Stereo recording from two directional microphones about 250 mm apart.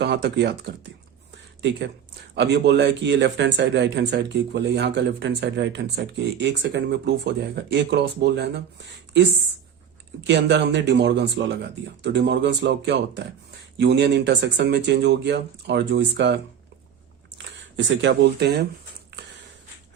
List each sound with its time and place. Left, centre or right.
0.0 s speech: right
2.3 s speech: right
10.2 s speech: right